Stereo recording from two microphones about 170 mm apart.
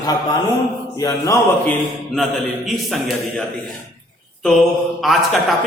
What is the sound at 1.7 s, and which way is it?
A man's voice, centre (ahead or behind).